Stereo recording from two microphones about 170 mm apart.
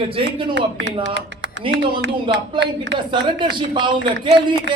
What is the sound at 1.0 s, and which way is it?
Speech, 90° right.